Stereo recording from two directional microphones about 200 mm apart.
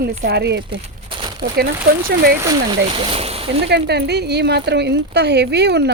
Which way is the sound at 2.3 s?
20° right (ahead or behind).